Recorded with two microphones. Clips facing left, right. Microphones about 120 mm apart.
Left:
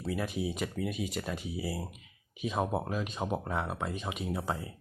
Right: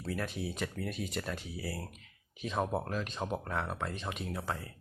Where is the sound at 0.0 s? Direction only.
10° left (ahead or behind).